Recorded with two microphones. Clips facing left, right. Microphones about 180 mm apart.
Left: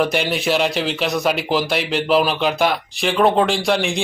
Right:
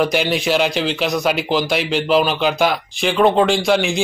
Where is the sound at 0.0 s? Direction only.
Centre (ahead or behind).